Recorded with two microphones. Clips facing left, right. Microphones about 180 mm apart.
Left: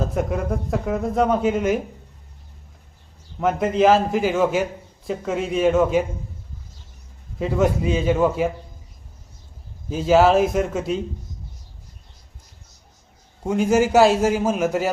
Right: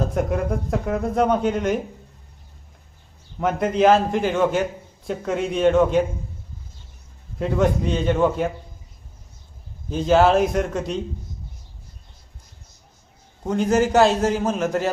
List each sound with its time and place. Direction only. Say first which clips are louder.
0.0 s a man's voice: right 1 dB; centre (ahead or behind)
3.4 s a man's voice: even; centre (ahead or behind)
7.3 s a man's voice: even; centre (ahead or behind)
9.9 s a man's voice: left 1 dB; 5° left (ahead or behind)
13.4 s a man's voice: left 1 dB; 10° left (ahead or behind)